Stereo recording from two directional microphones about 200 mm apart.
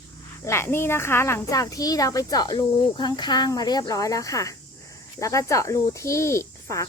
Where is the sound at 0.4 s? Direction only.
15° left (ahead or behind).